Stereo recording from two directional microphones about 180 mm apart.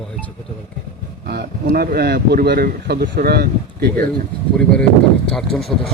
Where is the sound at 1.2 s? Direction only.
60° right (ahead or behind).